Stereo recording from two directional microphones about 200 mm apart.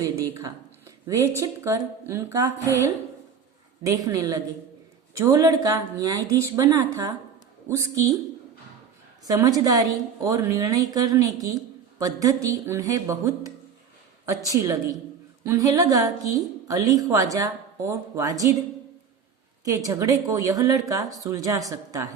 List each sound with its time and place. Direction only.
0.0 s a woman's voice: 15° right (ahead or behind)
9.2 s a woman's voice: 15° right (ahead or behind)
19.6 s a woman's voice: 15° right (ahead or behind)